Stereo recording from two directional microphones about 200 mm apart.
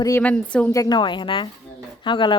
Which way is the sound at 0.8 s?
20° left (ahead or behind).